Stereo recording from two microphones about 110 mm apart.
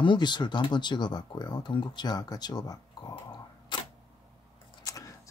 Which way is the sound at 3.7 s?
45° left (ahead or behind).